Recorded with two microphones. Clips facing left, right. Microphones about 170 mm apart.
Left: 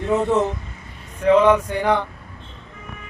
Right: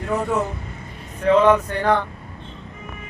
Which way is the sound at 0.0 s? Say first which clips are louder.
Left 4 dB; 20° left (ahead or behind).